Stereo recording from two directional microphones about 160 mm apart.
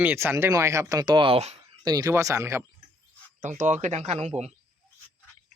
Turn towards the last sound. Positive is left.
turn(degrees=-45)  # may be behind; listen again after turning